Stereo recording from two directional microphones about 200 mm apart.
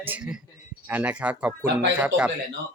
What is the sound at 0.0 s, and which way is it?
Speech, 5° right (ahead or behind).